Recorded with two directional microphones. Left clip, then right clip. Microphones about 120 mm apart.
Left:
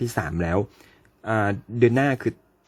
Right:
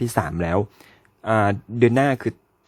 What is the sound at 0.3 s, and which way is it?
Speech, 15° right (ahead or behind).